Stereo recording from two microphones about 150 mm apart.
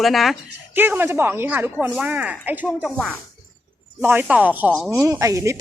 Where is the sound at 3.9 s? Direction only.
10° right (ahead or behind).